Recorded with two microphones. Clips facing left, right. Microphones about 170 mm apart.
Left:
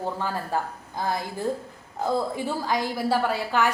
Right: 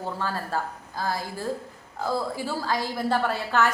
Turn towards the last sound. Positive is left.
turn(degrees=10)  # may be behind; listen again after turning